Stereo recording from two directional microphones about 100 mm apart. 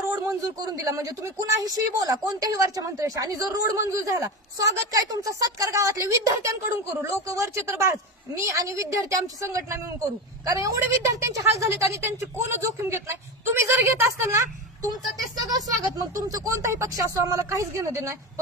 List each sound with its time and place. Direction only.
0.1 s a woman's voice: 35° right (ahead or behind)
15.5 s a woman's voice: 35° right (ahead or behind)